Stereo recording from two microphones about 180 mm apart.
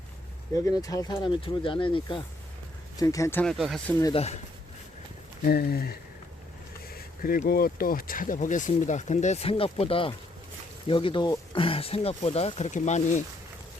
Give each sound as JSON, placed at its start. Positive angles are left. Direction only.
{"t": 0.5, "sound": "speech", "side_deg": 20}
{"t": 3.0, "sound": "speech", "side_deg": 20}
{"t": 3.6, "sound": "speech", "side_deg": 0}
{"t": 4.1, "sound": "speech", "side_deg": 35}
{"t": 5.5, "sound": "speech", "side_deg": 60}